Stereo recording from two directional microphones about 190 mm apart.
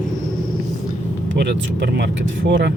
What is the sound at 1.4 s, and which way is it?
Speech, 60° right (ahead or behind).